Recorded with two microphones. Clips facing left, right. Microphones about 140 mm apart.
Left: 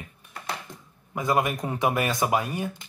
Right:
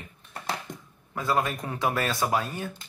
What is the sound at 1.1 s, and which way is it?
Speech, 15° left (ahead or behind).